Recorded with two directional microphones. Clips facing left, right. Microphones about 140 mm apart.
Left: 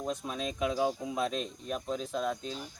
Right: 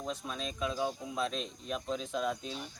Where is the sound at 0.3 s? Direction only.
10° left (ahead or behind).